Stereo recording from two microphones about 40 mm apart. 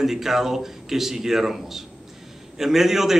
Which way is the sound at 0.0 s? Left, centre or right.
Centre.